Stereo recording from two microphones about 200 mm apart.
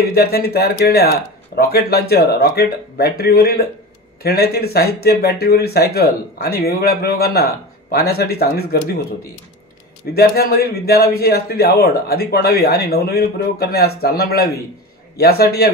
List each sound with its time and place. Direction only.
0.1 s a man's voice: 50° left (ahead or behind)
10.1 s a man's voice: 50° left (ahead or behind)